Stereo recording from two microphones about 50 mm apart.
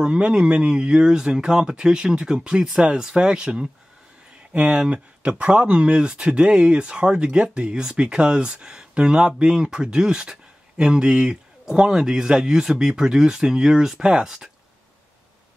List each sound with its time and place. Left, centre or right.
0.0 s speech: centre
2.6 s speech: centre
4.6 s speech: right